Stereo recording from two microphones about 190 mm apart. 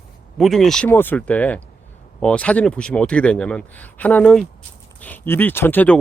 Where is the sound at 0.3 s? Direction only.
Centre (ahead or behind).